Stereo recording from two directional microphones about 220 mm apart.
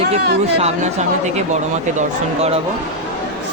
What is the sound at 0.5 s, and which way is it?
Speech, 30° right (ahead or behind).